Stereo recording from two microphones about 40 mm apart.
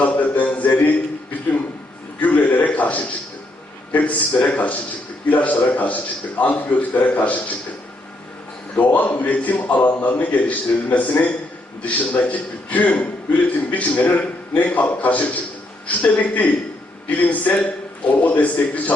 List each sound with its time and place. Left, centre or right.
0.0 s a sound: left
3.9 s a man's voice: left
8.8 s a man's voice: left